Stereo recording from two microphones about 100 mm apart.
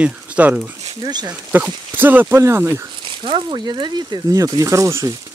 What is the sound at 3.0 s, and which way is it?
Speech, 55° right (ahead or behind).